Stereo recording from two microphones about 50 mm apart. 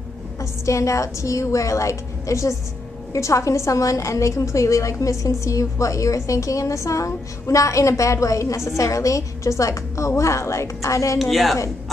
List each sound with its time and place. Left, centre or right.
0.4 s a woman's voice: left
11.1 s a woman's voice: centre